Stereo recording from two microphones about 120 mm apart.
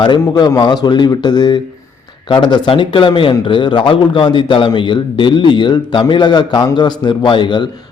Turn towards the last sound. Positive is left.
turn(degrees=40)  # may be behind; listen again after turning